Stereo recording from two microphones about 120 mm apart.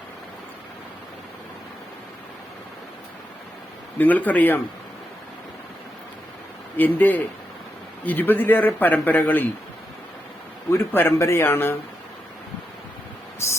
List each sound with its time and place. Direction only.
3.9 s a man's voice: 15° left (ahead or behind)
6.7 s a man's voice: 15° left (ahead or behind)
10.7 s a man's voice: 20° left (ahead or behind)